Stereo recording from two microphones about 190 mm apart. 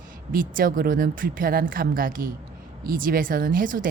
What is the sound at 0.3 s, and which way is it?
Speech, 45° right (ahead or behind).